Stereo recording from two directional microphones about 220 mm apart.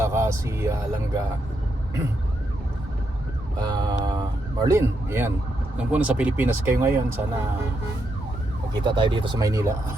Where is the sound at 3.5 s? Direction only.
20° right (ahead or behind).